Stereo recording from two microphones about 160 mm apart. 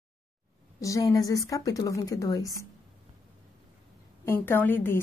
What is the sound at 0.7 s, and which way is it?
A woman's voice, 20° left (ahead or behind).